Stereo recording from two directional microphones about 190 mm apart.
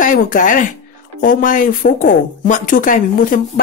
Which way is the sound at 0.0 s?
45° left (ahead or behind).